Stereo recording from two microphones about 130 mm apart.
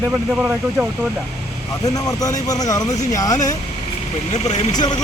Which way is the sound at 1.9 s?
30° left (ahead or behind).